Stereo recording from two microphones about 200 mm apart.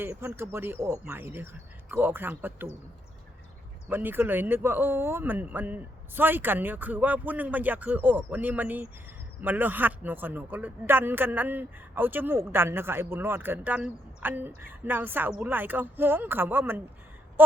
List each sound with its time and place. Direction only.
0.0 s speech: 10° right (ahead or behind)
3.8 s speech: 10° right (ahead or behind)